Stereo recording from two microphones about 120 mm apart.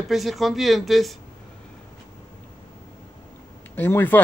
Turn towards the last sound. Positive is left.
turn(degrees=15)  # may be behind; listen again after turning